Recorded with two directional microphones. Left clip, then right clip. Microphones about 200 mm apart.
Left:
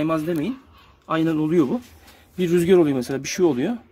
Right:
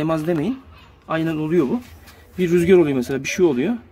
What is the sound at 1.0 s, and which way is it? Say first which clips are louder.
Speech: left 1 dB; 15° left (ahead or behind).